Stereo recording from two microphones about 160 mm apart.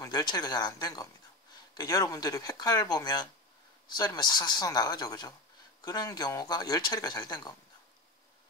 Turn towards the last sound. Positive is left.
turn(degrees=25)  # may be behind; listen again after turning